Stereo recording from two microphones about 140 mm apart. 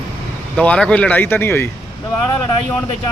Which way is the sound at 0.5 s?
10° left (ahead or behind).